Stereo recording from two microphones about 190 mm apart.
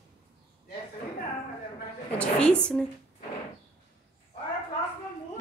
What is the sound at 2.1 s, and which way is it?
Speech, 5° left (ahead or behind).